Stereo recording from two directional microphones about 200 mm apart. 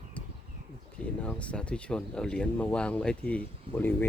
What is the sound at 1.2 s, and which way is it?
A man's voice, 5° left (ahead or behind).